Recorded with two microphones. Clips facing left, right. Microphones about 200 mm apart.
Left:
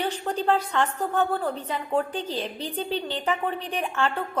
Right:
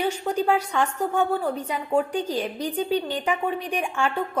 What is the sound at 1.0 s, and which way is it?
A woman's voice, 10° right (ahead or behind).